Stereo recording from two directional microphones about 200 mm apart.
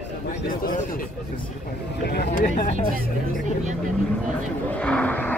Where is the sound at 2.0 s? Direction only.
50° left (ahead or behind).